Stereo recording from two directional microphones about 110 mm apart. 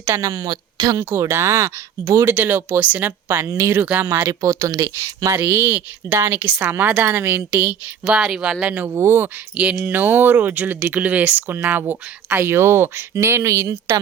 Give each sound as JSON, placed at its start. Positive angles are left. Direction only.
{"t": 0.0, "sound": "speech", "side_deg": -30}
{"t": 0.3, "sound": "speech", "side_deg": -40}
{"t": 0.9, "sound": "speech", "side_deg": -25}
{"t": 3.8, "sound": "speech", "side_deg": -15}
{"t": 8.0, "sound": "speech", "side_deg": -5}
{"t": 8.9, "sound": "speech", "side_deg": -25}
{"t": 9.6, "sound": "speech", "side_deg": -10}